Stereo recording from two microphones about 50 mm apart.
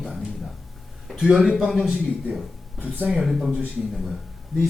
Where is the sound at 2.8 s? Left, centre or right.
Right.